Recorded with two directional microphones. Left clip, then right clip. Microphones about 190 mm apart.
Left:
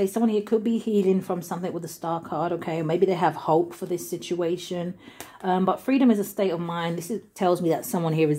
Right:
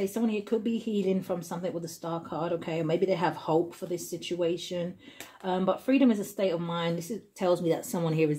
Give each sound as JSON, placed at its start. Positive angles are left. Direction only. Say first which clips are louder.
{"t": 0.0, "sound": "speech", "louder": "left 7 dB", "side_deg": 30}